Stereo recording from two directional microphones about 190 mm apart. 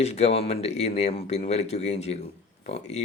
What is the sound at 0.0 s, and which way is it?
Speech, 35° left (ahead or behind).